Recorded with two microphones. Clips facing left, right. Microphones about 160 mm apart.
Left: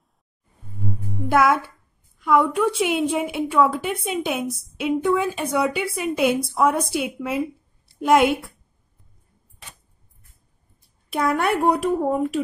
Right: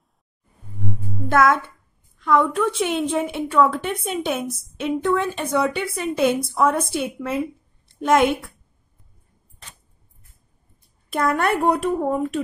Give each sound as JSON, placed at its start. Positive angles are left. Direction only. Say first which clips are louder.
{"t": 1.3, "sound": "a woman's voice", "louder": "right 1 dB", "side_deg": 10}
{"t": 11.1, "sound": "a woman's voice", "louder": "right 1 dB", "side_deg": 0}